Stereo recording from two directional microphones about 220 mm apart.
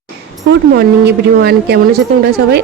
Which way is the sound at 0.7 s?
45° right (ahead or behind).